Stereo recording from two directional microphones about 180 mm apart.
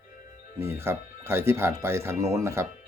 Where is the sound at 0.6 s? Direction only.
15° right (ahead or behind).